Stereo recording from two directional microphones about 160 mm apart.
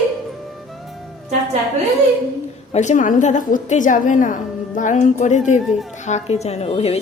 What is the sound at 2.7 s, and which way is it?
A woman's voice, 50° left (ahead or behind).